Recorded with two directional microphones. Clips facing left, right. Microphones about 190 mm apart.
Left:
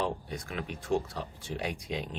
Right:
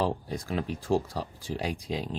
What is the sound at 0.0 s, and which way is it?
Speech, 35° right (ahead or behind).